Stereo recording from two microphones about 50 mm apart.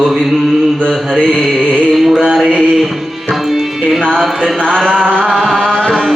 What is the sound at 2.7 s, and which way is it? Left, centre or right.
Tabla, centre.